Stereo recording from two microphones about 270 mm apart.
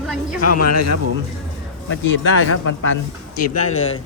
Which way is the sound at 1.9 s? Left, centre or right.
Left.